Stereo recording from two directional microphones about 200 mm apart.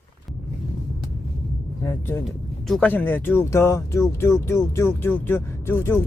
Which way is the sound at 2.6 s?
5° left (ahead or behind).